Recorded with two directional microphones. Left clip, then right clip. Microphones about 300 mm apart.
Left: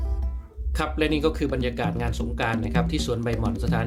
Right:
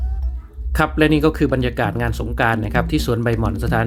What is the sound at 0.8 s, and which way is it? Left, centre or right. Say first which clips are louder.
Speech: right 8 dB; right.